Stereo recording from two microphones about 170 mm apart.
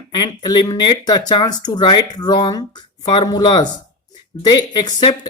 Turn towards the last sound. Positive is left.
turn(degrees=25)  # may be behind; listen again after turning